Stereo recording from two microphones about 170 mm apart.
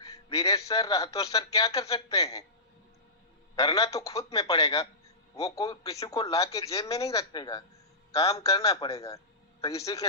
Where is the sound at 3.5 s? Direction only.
20° left (ahead or behind).